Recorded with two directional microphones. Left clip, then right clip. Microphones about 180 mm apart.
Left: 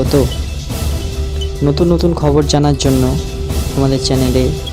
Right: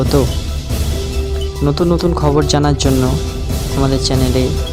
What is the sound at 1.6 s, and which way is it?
Speech, centre (ahead or behind).